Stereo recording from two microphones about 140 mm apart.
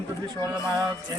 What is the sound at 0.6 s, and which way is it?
Music, 25° right (ahead or behind).